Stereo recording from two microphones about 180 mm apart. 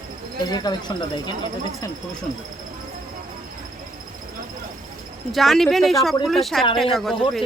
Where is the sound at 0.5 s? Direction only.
25° left (ahead or behind).